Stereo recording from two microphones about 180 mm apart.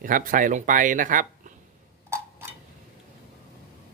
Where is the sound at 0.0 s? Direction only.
50° right (ahead or behind).